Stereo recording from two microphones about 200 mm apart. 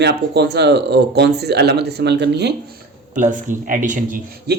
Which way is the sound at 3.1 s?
40° right (ahead or behind).